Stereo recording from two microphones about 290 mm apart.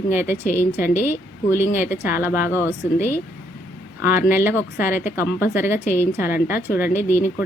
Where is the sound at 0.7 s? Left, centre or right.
Left.